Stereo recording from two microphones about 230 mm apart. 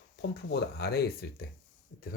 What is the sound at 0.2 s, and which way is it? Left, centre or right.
Speech, left.